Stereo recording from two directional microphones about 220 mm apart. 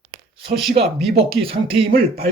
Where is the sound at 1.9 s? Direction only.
40° right (ahead or behind).